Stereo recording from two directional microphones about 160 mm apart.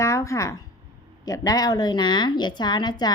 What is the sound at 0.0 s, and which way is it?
A woman's voice, 20° left (ahead or behind).